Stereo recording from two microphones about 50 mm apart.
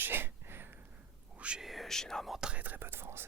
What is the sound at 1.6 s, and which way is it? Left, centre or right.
Speech, centre.